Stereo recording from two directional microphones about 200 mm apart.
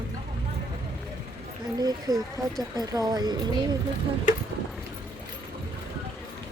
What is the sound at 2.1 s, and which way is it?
Speech, 20° right (ahead or behind).